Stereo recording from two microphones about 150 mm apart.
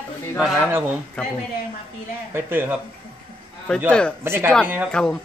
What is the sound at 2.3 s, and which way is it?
Speech, 15° right (ahead or behind).